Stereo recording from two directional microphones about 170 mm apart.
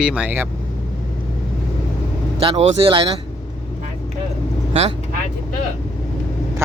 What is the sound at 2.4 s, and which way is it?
Speech, 35° right (ahead or behind).